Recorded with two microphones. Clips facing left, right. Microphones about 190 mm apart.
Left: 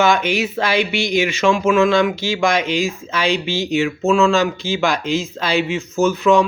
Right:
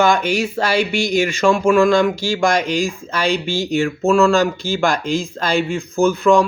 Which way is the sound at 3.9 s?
Centre (ahead or behind).